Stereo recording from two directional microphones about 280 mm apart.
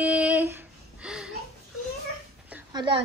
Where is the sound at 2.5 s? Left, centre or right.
Centre.